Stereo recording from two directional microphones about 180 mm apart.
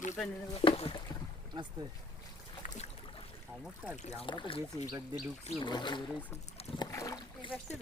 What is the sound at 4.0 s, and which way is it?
Speech, 40° left (ahead or behind).